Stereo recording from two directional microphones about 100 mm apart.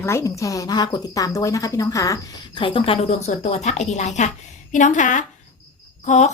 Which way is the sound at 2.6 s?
60° left (ahead or behind).